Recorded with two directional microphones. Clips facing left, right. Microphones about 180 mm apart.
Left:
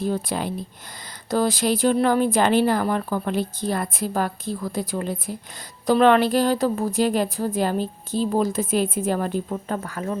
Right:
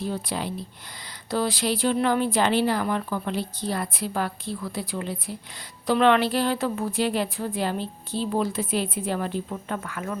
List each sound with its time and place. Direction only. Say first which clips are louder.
0.0 s a woman's voice: left 4 dB; 50° left (ahead or behind)